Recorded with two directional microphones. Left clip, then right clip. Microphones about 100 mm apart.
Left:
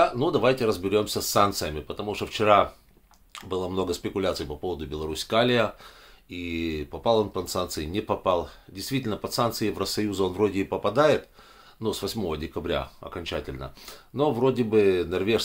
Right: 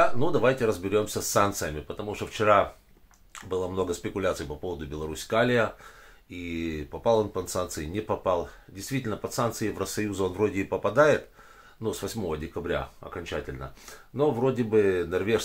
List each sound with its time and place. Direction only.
0.0 s speech: 15° left (ahead or behind)